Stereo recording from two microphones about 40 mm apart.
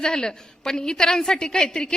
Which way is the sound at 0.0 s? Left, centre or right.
Centre.